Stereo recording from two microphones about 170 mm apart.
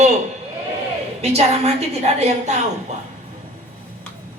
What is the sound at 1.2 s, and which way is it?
Speech, 40° right (ahead or behind).